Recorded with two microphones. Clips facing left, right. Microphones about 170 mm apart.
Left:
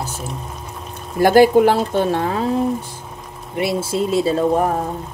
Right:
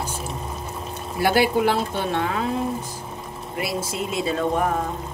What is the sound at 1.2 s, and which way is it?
Speech, 45° left (ahead or behind).